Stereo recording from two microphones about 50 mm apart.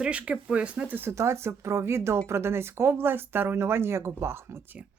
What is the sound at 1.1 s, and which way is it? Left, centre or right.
Speech, right.